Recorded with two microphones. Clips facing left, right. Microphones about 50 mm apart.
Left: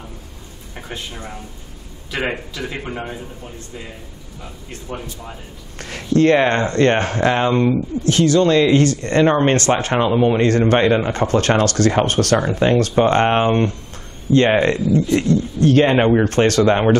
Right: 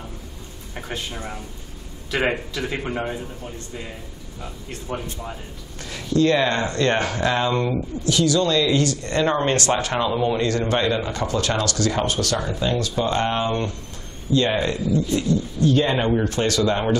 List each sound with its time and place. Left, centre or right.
0.7 s a man's voice: centre
4.4 s a man's voice: centre
5.8 s speech: left